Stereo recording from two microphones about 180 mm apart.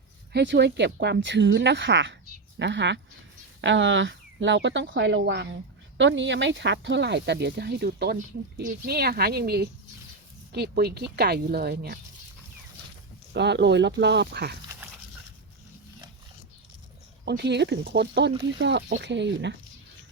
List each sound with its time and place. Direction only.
0.3 s speech: 70° right (ahead or behind); by 2.1 s 90° right
2.6 s speech: 80° right
3.6 s speech: 90° right
6.0 s speech: 90° right; by 11.9 s 60° right (ahead or behind)
13.3 s speech: 75° right (ahead or behind)
17.2 s speech: 70° right (ahead or behind)